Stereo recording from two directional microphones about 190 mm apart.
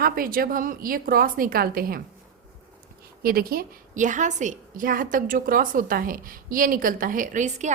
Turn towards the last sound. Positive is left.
turn(degrees=-40)  # may be behind; listen again after turning